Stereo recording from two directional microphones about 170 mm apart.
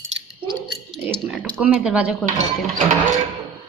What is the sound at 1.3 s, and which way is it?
Speech, 5° right (ahead or behind).